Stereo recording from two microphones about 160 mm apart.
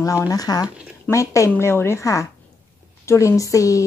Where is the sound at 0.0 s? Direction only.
20° left (ahead or behind).